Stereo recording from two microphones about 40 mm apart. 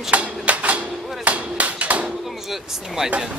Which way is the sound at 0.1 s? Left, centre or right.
Right.